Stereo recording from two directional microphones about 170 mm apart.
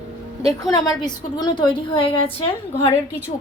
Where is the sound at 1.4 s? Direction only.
30° left (ahead or behind).